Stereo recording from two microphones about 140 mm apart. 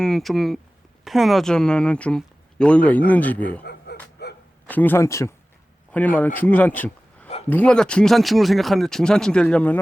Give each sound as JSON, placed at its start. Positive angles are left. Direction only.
{"t": 0.0, "sound": "speech", "side_deg": 0}